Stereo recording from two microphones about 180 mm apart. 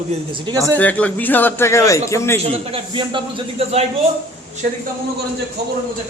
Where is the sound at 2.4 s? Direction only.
30° right (ahead or behind).